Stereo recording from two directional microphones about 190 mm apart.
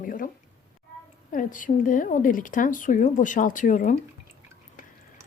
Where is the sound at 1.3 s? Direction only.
45° left (ahead or behind).